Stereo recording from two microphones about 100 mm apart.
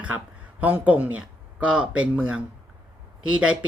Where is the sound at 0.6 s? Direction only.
15° right (ahead or behind).